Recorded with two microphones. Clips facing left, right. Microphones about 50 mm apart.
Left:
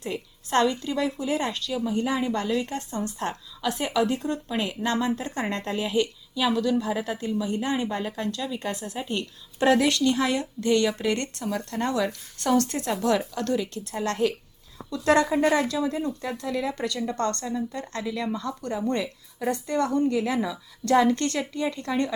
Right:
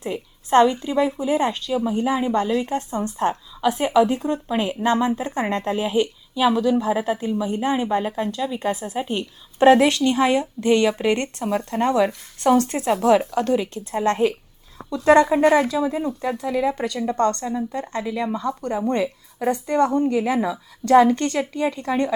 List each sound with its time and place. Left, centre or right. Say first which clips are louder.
0.0 s a woman's voice: right 4 dB; right